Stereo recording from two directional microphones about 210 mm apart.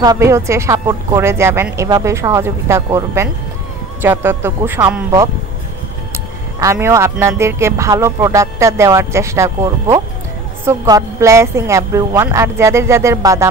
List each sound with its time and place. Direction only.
0.0 s speech: 15° right (ahead or behind)
6.6 s speech: 15° right (ahead or behind)